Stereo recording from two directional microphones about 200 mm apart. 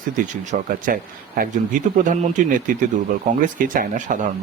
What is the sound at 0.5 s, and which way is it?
Speech, 40° right (ahead or behind).